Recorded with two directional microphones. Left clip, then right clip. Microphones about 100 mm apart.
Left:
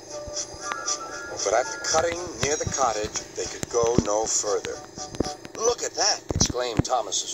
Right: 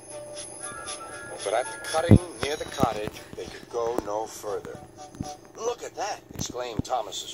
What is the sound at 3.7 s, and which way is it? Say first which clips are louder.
Speech: left 6 dB; 30° left (ahead or behind).